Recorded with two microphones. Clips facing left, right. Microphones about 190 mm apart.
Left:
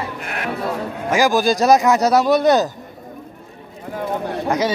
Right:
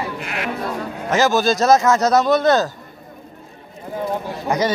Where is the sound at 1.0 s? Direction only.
10° left (ahead or behind).